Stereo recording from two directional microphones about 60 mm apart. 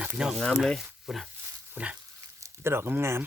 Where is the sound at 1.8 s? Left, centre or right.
Right.